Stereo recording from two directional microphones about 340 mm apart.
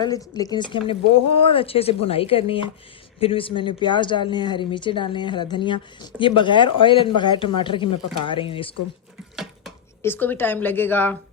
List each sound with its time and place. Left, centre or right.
0.3 s speech: centre
9.3 s speech: centre